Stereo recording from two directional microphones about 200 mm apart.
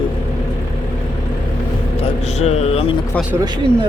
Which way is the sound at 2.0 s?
35° left (ahead or behind).